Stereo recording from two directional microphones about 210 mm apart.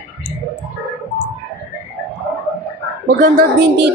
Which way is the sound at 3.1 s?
50° right (ahead or behind).